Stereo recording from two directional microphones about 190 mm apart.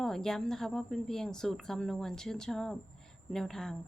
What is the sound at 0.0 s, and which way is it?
A woman's voice, 5° left (ahead or behind).